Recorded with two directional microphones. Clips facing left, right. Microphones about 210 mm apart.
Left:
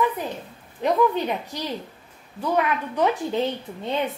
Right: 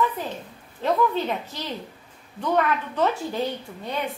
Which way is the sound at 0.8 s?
15° left (ahead or behind).